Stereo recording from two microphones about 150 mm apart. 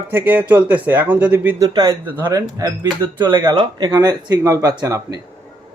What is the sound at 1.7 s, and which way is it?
Speech, 25° right (ahead or behind).